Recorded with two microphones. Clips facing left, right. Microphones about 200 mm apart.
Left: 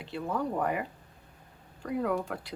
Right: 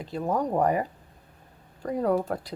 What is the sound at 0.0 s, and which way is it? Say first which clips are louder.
Speech: right 5 dB; 40° right (ahead or behind).